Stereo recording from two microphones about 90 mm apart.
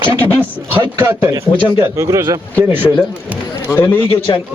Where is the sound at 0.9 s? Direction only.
25° right (ahead or behind).